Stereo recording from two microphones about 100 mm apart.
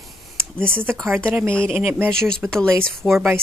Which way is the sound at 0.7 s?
20° right (ahead or behind).